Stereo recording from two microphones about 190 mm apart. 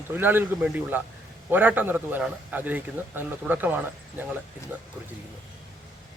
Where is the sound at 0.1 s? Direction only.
10° right (ahead or behind).